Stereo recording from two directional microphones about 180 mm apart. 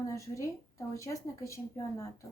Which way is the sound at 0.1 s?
15° left (ahead or behind).